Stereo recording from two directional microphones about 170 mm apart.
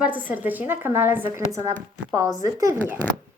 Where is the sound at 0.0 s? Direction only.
10° right (ahead or behind).